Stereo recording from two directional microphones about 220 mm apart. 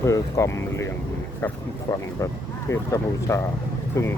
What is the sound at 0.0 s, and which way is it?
Speech, 15° left (ahead or behind).